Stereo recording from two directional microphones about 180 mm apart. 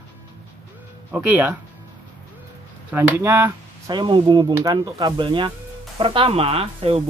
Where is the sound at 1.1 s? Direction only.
10° right (ahead or behind).